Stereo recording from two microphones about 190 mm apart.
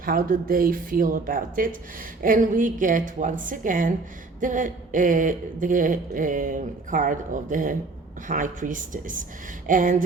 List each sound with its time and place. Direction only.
0.0 s speech: 50° right (ahead or behind)